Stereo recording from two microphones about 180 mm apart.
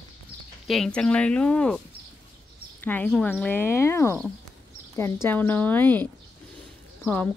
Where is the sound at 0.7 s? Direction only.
Centre (ahead or behind).